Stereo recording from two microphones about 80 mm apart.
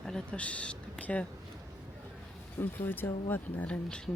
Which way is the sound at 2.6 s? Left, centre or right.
Left.